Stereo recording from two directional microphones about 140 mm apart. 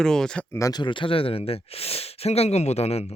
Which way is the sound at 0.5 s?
25° left (ahead or behind).